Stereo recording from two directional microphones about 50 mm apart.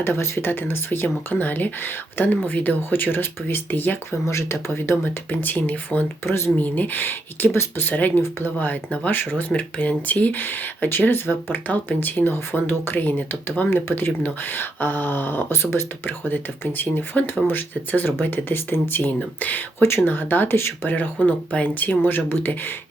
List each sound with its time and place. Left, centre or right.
0.0 s speech: left
4.3 s speech: left
6.2 s speech: left
6.6 s speech: left
7.9 s speech: left
14.2 s speech: left
14.6 s speech: left
19.8 s speech: left